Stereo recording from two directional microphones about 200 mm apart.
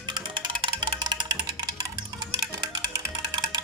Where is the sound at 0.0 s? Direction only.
20° right (ahead or behind).